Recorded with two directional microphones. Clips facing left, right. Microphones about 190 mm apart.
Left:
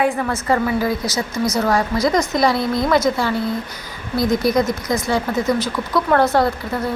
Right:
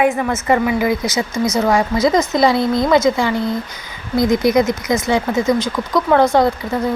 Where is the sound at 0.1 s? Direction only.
5° right (ahead or behind); by 2.6 s 25° right (ahead or behind).